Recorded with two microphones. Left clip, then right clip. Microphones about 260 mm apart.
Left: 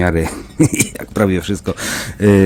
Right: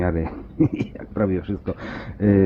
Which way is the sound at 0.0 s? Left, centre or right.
Left.